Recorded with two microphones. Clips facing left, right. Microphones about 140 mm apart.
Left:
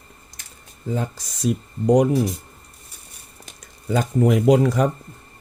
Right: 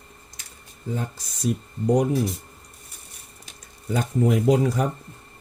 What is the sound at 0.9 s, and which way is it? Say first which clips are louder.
Speech: left 5 dB; 90° left.